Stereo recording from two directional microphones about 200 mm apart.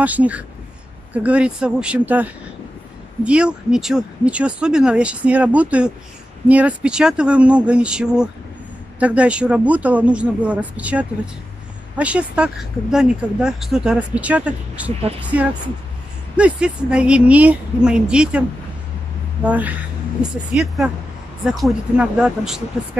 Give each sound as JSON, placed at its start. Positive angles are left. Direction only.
{"t": 0.0, "sound": "a woman's voice", "side_deg": -5}
{"t": 16.3, "sound": "speech", "side_deg": -5}
{"t": 19.4, "sound": "a woman's voice", "side_deg": -10}